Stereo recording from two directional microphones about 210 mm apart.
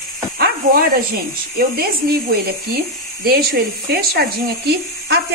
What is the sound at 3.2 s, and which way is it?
Speech, 45° right (ahead or behind).